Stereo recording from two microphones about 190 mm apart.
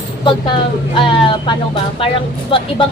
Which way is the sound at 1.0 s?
25° left (ahead or behind).